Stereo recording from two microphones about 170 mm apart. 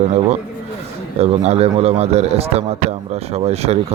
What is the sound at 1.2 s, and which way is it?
Speech, 40° right (ahead or behind).